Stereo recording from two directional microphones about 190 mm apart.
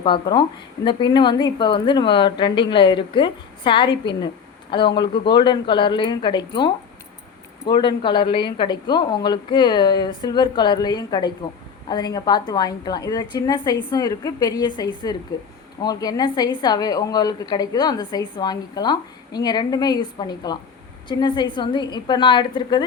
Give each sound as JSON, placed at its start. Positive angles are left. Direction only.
{"t": 0.0, "sound": "a woman's voice", "side_deg": 25}